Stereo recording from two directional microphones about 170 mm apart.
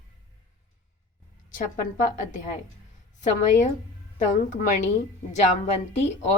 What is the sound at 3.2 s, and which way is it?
A woman's voice, 45° left (ahead or behind).